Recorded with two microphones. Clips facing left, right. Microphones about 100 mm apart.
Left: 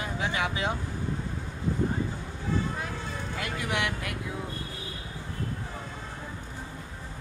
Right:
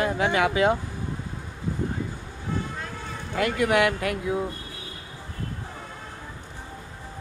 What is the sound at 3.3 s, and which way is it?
Speech, 65° right (ahead or behind).